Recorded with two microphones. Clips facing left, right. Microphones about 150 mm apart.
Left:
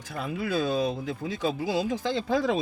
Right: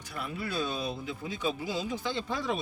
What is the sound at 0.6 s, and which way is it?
Speech, 90° left.